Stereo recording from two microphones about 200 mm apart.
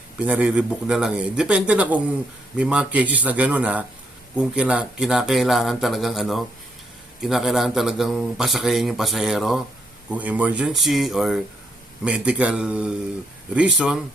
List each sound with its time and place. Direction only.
0.2 s a man's voice: 5° right (ahead or behind)